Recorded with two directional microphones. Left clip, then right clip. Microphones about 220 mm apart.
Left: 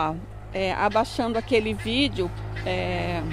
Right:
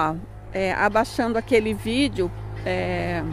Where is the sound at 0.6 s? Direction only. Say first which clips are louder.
Right 2 dB; 20° right (ahead or behind).